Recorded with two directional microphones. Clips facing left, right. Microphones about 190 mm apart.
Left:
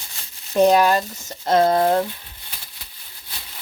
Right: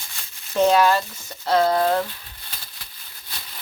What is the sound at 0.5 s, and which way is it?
Speech, 15° left (ahead or behind).